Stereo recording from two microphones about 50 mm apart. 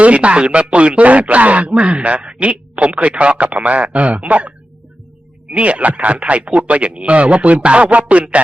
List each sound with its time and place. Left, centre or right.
0.0 s speech: right